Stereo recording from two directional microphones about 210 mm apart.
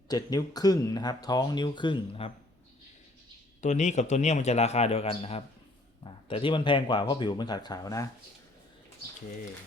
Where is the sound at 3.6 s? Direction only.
35° left (ahead or behind); by 8.1 s 15° left (ahead or behind).